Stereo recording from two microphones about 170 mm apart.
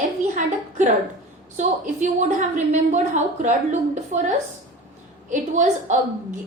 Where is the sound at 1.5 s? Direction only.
45° right (ahead or behind).